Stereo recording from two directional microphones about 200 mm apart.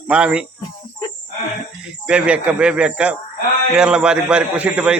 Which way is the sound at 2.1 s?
5° right (ahead or behind).